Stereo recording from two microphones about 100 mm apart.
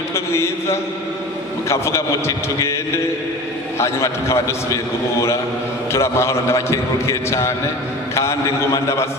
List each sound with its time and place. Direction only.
0.1 s a man's voice: 25° left (ahead or behind)
3.8 s a man's voice: 30° left (ahead or behind)
5.9 s a man's voice: 25° left (ahead or behind)